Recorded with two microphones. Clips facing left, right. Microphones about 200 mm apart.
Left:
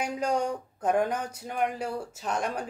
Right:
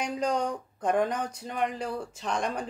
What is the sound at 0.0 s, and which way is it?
Speech, 10° left (ahead or behind).